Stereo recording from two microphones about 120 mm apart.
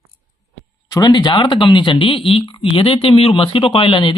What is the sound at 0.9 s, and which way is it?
Speech, 35° left (ahead or behind).